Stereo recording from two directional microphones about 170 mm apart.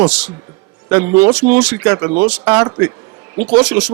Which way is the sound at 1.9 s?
20° right (ahead or behind).